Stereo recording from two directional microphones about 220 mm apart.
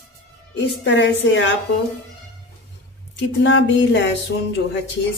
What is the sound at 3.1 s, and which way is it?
Speech, 55° left (ahead or behind).